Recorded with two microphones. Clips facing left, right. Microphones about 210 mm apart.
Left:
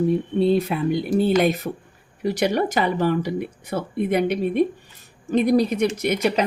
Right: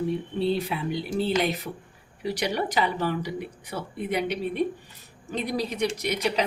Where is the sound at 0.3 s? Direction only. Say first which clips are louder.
Left 6 dB; 50° left (ahead or behind).